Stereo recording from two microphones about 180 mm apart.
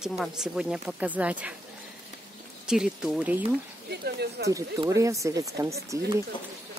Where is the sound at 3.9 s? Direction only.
65° right (ahead or behind).